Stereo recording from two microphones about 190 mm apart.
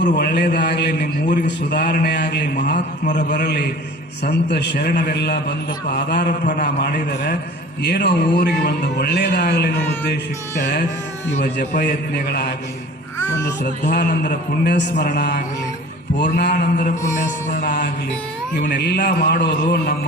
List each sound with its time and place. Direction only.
0.0 s a man's voice: 55° left (ahead or behind)
3.1 s a man's voice: 40° left (ahead or behind)
3.4 s a man's voice: 60° left (ahead or behind)
6.4 s a man's voice: 45° left (ahead or behind)
6.7 s a man's voice: 60° left (ahead or behind)
11.9 s a man's voice: 60° left (ahead or behind)
13.9 s a man's voice: 45° left (ahead or behind)
14.7 s a man's voice: 65° left (ahead or behind)
16.4 s a man's voice: 60° left (ahead or behind)
16.7 s a man's voice: 45° left (ahead or behind)
18.8 s a man's voice: 60° left (ahead or behind)